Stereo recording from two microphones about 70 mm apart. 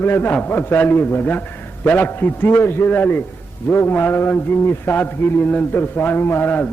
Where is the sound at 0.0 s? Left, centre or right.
Left.